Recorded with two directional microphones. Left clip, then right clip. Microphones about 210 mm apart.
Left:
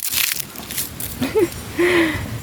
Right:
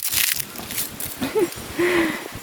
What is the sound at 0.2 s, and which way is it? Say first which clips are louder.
Biting: left 1 dB; 5° left (ahead or behind).